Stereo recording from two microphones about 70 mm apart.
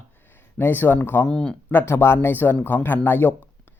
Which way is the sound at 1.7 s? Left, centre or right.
Left.